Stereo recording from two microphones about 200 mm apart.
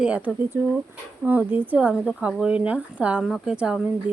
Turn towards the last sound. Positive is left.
turn(degrees=-5)  # may be behind; listen again after turning